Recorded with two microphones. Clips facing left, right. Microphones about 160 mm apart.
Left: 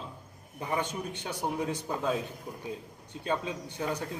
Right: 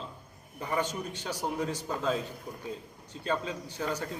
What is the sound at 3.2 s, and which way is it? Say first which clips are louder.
Speech: even; 15° left (ahead or behind).